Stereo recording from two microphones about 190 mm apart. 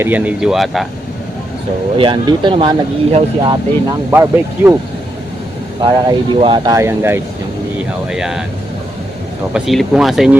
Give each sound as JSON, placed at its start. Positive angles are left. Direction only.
{"t": 0.0, "sound": "speech", "side_deg": -10}
{"t": 2.0, "sound": "speech", "side_deg": -25}
{"t": 4.1, "sound": "speech", "side_deg": -10}
{"t": 5.8, "sound": "speech", "side_deg": -25}
{"t": 9.5, "sound": "speech", "side_deg": 0}